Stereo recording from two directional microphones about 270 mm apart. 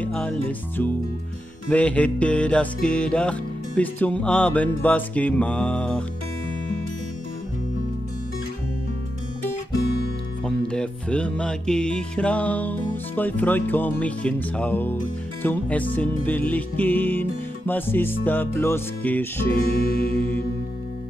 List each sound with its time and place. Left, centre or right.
0.0 s music: centre
10.4 s music: centre
19.6 s music: left